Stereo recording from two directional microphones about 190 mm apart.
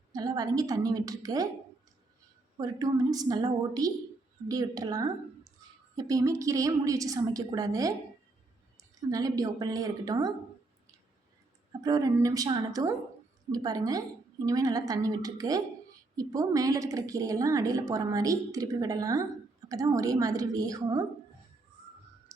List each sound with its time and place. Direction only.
0.1 s speech: 20° right (ahead or behind)
2.6 s speech: 20° right (ahead or behind)
5.6 s a sound: 20° right (ahead or behind)
6.0 s a woman's voice: 20° right (ahead or behind)
11.8 s a woman's voice: 20° right (ahead or behind)
22.3 s music: 15° right (ahead or behind)